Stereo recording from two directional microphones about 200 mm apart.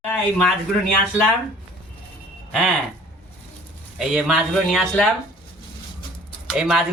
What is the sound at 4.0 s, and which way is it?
Speech, 5° right (ahead or behind).